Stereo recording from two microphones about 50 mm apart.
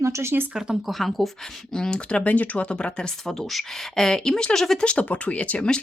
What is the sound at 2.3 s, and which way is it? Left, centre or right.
Speech, left.